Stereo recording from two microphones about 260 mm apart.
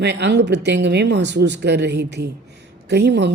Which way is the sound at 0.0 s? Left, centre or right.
Right.